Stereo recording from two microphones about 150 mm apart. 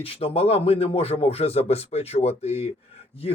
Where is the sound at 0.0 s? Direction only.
40° left (ahead or behind).